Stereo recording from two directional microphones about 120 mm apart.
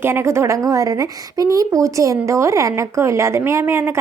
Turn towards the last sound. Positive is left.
turn(degrees=-20)  # may be behind; listen again after turning